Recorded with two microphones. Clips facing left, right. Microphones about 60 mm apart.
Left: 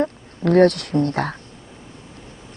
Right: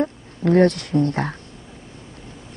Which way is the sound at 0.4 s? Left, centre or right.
Left.